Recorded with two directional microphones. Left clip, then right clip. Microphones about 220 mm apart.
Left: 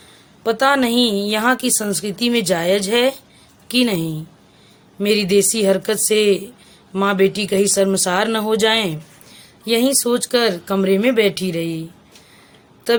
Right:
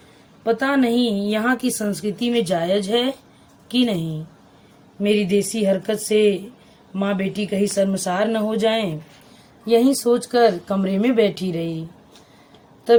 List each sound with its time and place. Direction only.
0.4 s a woman's voice: 55° left (ahead or behind)
5.0 s a woman's voice: 50° left (ahead or behind)